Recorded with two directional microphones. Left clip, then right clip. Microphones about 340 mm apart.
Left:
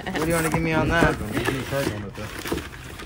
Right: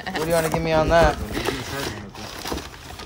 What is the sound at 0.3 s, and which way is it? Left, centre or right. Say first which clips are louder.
Speech: right 4 dB; right.